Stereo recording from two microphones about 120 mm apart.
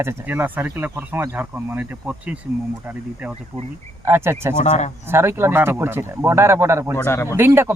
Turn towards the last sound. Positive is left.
turn(degrees=-20)  # may be behind; listen again after turning